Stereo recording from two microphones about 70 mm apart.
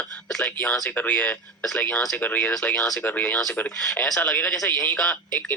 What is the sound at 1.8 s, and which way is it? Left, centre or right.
Speech, centre.